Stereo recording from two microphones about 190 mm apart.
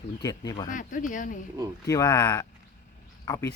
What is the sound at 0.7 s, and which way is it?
Speech, 45° left (ahead or behind).